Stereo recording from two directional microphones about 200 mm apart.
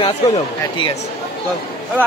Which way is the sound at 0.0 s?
25° left (ahead or behind).